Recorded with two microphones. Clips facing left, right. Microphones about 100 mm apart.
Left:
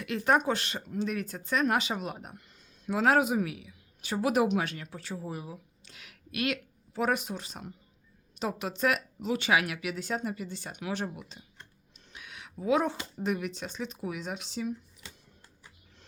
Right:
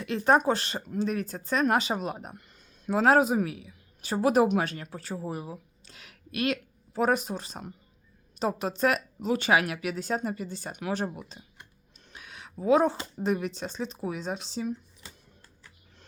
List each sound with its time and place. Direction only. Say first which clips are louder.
0.0 s speech: right 3 dB; 30° right (ahead or behind)
11.9 s a sound: right 1 dB; 40° right (ahead or behind)
13.2 s speech: right 3 dB; 35° right (ahead or behind)